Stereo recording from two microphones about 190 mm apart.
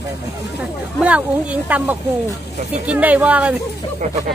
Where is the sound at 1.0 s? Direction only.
5° right (ahead or behind).